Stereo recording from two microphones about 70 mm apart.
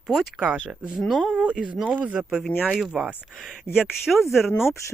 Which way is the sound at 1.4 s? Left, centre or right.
Centre.